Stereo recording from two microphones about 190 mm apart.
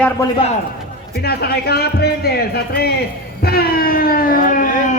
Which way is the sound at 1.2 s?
55° left (ahead or behind).